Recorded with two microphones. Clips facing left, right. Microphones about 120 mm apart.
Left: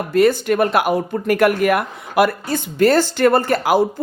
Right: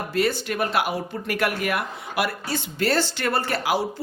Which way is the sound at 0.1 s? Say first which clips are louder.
Left 10 dB; 50° left (ahead or behind).